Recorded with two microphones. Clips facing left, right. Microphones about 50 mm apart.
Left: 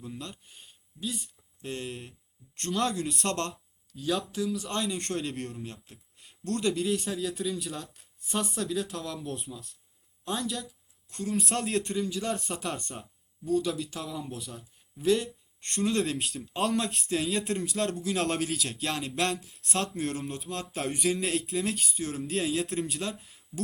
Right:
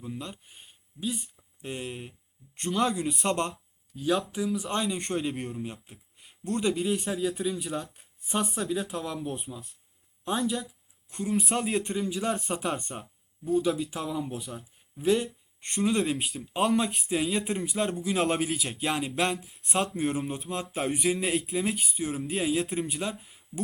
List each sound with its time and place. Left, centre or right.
0.0 s speech: centre